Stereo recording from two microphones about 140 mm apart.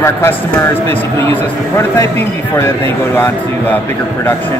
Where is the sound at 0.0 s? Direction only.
15° left (ahead or behind).